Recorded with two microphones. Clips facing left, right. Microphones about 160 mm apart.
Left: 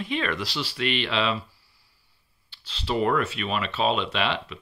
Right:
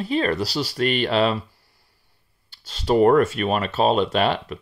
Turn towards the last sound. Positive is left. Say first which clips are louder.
# right 6 dB
turn(degrees=-45)  # may be behind; listen again after turning